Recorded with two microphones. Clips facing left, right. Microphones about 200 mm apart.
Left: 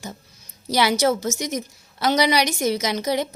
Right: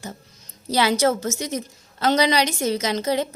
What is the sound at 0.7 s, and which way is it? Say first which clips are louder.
A woman's voice: even; 15° left (ahead or behind).